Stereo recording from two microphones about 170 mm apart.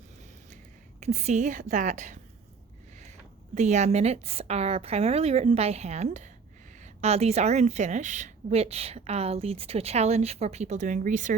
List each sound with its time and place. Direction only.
0.5 s a woman's voice: 40° right (ahead or behind)
3.5 s a woman's voice: 40° right (ahead or behind)